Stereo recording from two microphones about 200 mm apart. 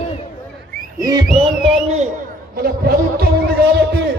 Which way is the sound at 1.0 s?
20° right (ahead or behind).